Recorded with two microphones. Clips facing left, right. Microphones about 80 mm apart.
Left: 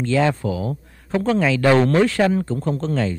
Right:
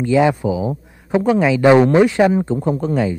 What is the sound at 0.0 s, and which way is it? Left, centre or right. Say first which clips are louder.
A man's voice: right 4 dB; centre.